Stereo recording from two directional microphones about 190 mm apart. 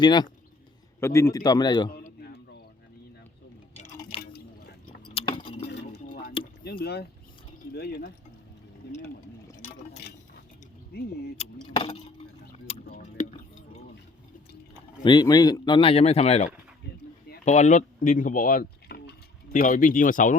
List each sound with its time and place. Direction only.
0.0 s speech: 20° left (ahead or behind)
4.2 s a sound: 55° left (ahead or behind)
5.0 s keys jangling: 30° left (ahead or behind)
6.4 s a sound: 55° left (ahead or behind)
7.8 s speech: 55° left (ahead or behind)
10.9 s speech: 55° left (ahead or behind)
11.7 s keys jangling: 30° left (ahead or behind)
15.0 s speech: 20° left (ahead or behind); by 20.3 s 45° left (ahead or behind)